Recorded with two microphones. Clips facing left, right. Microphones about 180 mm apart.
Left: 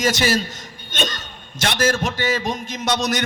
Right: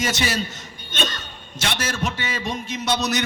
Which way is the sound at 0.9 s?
45° left (ahead or behind).